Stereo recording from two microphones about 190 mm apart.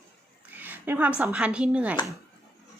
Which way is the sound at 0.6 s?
10° right (ahead or behind).